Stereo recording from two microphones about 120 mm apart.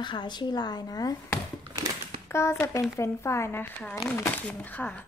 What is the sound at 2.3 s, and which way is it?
A woman's voice, 20° left (ahead or behind).